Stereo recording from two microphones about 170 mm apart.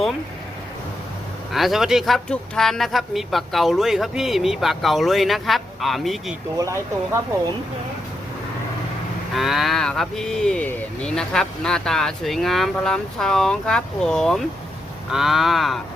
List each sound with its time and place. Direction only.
1.5 s speech: centre (ahead or behind)
6.6 s speech: 20° right (ahead or behind)
9.3 s speech: centre (ahead or behind)